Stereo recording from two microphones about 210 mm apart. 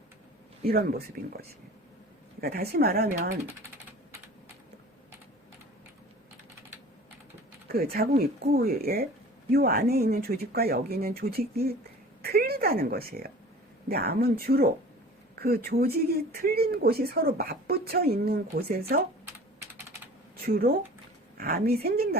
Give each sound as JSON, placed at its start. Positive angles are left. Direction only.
{"t": 0.6, "sound": "speech", "side_deg": -45}
{"t": 7.7, "sound": "a woman's voice", "side_deg": -45}
{"t": 20.4, "sound": "speech", "side_deg": -45}